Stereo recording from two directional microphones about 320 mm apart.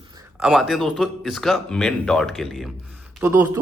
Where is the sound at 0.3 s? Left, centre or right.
Centre.